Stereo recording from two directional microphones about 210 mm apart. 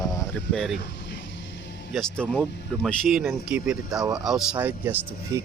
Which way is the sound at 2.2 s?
5° right (ahead or behind).